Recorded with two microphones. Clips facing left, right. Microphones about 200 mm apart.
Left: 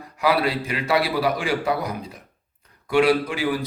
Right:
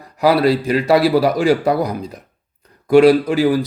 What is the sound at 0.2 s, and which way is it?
A man's voice, 40° right (ahead or behind).